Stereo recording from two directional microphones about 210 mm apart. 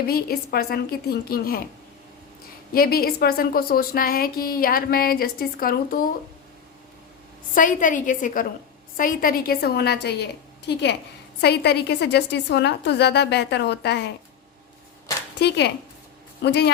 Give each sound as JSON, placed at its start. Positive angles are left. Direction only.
{"t": 0.0, "sound": "speech", "side_deg": 45}
{"t": 2.7, "sound": "speech", "side_deg": 45}
{"t": 7.5, "sound": "a woman's voice", "side_deg": 40}
{"t": 15.4, "sound": "speech", "side_deg": 55}